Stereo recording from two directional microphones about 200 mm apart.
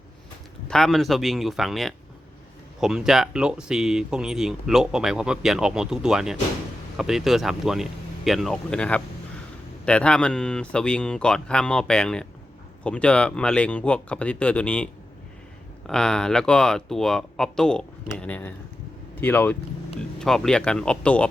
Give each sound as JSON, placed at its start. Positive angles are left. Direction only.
{"t": 0.7, "sound": "speech", "side_deg": 0}
{"t": 15.9, "sound": "speech", "side_deg": 5}